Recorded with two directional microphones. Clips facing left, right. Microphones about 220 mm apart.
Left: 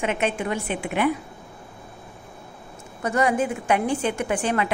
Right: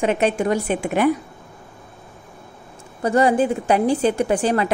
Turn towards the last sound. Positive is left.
turn(degrees=-35)  # may be behind; listen again after turning